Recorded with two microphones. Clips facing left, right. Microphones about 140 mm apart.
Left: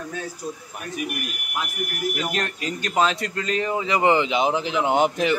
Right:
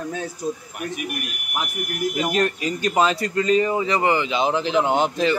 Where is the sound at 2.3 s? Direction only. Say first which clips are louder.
Right 6 dB; 5° right (ahead or behind).